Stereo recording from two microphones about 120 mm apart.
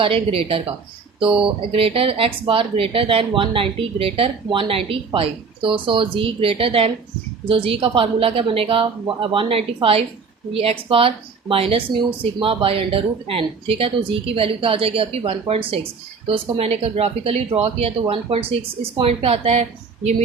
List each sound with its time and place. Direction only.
0.0 s a woman's voice: 50° right (ahead or behind)